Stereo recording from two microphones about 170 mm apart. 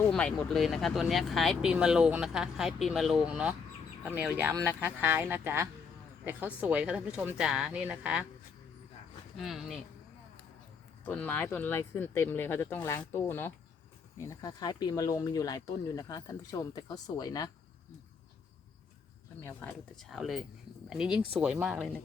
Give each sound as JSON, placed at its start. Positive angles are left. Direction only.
{"t": 0.1, "sound": "speech", "side_deg": 5}
{"t": 9.4, "sound": "speech", "side_deg": 0}
{"t": 11.0, "sound": "speech", "side_deg": 10}
{"t": 19.4, "sound": "speech", "side_deg": 15}
{"t": 20.0, "sound": "speech", "side_deg": 0}